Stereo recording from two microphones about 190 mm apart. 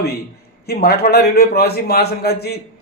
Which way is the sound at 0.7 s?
55° left (ahead or behind).